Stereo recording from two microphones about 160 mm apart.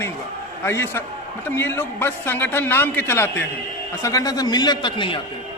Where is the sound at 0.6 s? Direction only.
15° left (ahead or behind).